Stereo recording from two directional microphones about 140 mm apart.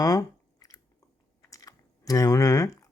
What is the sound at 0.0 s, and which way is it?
Chewing, 25° left (ahead or behind).